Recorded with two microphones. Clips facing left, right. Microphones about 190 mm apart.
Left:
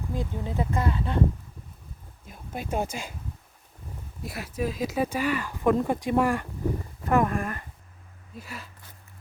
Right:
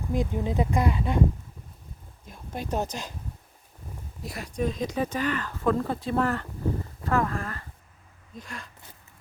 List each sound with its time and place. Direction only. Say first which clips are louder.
0.1 s speech: right 6 dB; 15° right (ahead or behind)
2.2 s speech: right 1 dB; 5° left (ahead or behind)
4.2 s speech: right 1 dB; centre (ahead or behind)
8.4 s speech: even; 5° left (ahead or behind)